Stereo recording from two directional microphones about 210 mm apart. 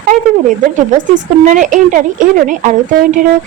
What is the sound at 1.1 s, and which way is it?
Speech, 40° right (ahead or behind).